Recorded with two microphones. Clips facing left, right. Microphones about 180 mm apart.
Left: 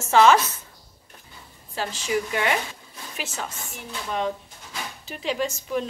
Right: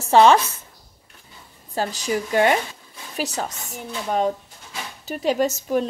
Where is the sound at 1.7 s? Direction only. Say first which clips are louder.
Right 2 dB; 40° right (ahead or behind).